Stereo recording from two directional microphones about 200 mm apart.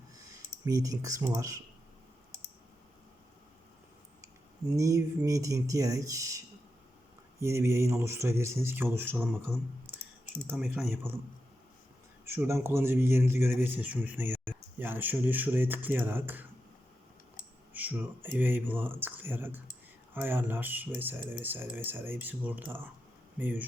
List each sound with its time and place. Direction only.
0.6 s a man's voice: 15° right (ahead or behind)
4.8 s a man's voice: 15° right (ahead or behind)
10.5 s speech: centre (ahead or behind)
12.2 s a man's voice: 10° right (ahead or behind)
17.7 s a man's voice: 10° right (ahead or behind)